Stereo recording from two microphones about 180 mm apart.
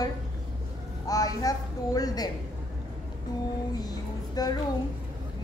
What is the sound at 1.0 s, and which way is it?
Speech, 20° left (ahead or behind).